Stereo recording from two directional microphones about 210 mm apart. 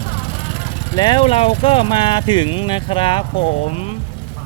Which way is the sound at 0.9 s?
20° left (ahead or behind).